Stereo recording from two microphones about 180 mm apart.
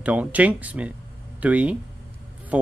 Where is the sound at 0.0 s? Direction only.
10° right (ahead or behind).